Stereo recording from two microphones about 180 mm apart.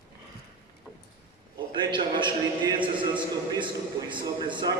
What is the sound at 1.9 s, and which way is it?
A man's voice, 25° right (ahead or behind).